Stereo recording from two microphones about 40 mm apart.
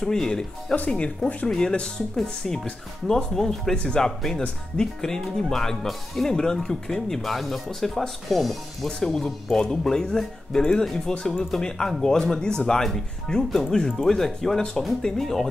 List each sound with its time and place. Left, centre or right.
0.0 s speech: centre
0.8 s speech: left; by 3.7 s centre
3.7 s speech: left
4.0 s speech: centre
7.2 s speech: centre
9.0 s speech: centre